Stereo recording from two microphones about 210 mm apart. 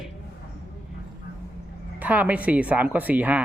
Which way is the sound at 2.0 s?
5° right (ahead or behind).